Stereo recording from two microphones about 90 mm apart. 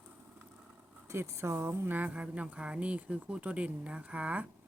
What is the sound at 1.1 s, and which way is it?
A woman's voice, 30° right (ahead or behind).